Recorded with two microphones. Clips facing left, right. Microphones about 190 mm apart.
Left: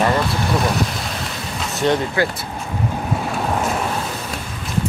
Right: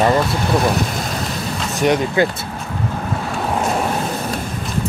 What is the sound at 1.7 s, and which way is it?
Speech, 15° right (ahead or behind).